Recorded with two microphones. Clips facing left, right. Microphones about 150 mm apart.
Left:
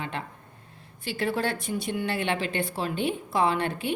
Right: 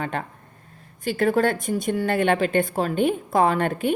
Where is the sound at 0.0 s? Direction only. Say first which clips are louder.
Right 6 dB; 45° right (ahead or behind).